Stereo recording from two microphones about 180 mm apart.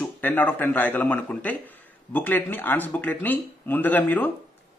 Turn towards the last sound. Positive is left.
turn(degrees=10)  # may be behind; listen again after turning